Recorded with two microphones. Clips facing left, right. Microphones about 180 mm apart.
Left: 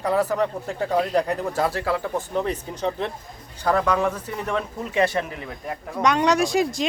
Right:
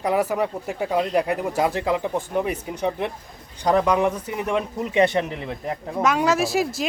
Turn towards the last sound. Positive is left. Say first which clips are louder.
# left 1 dB
turn(degrees=-5)  # may be behind; listen again after turning